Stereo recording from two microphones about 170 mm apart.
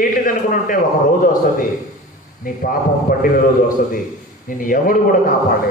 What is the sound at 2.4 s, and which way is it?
Speech, 55° left (ahead or behind).